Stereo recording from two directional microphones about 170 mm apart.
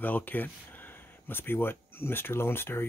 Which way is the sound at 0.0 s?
10° left (ahead or behind).